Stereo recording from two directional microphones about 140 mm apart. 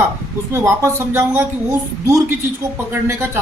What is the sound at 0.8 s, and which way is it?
Speech, 20° right (ahead or behind).